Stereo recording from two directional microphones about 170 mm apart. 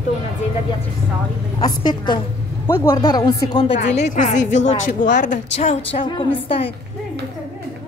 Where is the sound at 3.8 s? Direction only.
40° left (ahead or behind).